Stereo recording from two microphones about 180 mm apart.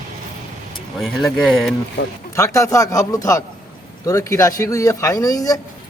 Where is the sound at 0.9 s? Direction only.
Centre (ahead or behind).